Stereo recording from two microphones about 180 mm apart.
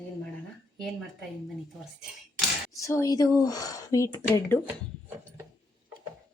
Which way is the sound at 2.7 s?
20° left (ahead or behind).